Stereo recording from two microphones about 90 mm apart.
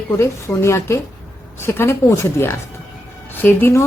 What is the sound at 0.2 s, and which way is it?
Speech, 30° left (ahead or behind).